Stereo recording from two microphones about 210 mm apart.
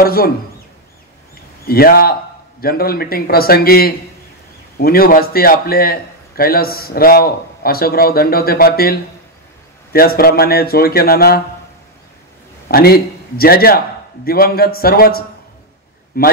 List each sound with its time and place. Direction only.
0.0 s speech: 45° left (ahead or behind)
1.7 s a man's voice: 45° left (ahead or behind)
12.6 s a man's voice: 45° left (ahead or behind)